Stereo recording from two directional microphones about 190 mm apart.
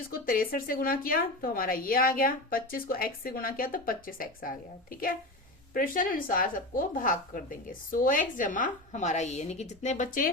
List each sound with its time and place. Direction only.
0.1 s a woman's voice: 50° left (ahead or behind)